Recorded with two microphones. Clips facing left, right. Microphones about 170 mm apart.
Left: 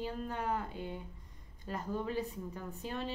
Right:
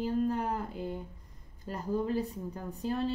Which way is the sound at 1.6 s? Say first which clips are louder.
Right 5 dB; 35° right (ahead or behind).